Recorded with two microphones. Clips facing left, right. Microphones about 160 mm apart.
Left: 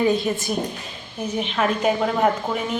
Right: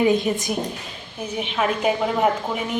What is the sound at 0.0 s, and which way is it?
A woman's voice, 20° right (ahead or behind).